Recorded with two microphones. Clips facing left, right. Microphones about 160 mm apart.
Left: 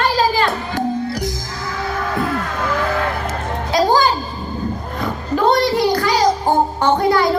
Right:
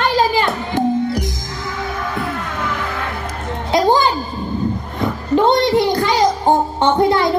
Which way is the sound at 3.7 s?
20° right (ahead or behind).